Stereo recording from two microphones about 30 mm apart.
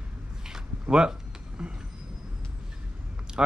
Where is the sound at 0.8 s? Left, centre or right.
Right.